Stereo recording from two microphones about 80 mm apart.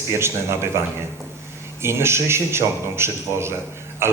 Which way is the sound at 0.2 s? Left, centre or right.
Right.